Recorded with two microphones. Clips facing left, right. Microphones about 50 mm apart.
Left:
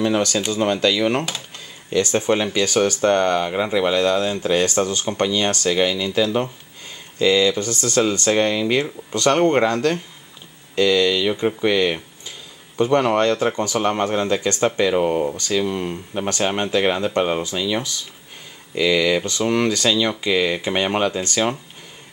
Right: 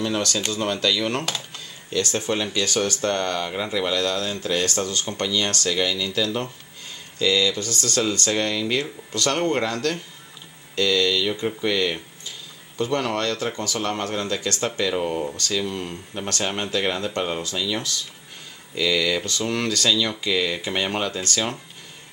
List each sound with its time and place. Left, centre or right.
0.0 s speech: centre